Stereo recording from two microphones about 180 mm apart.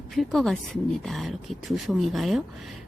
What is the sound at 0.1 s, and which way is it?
Speech, centre (ahead or behind).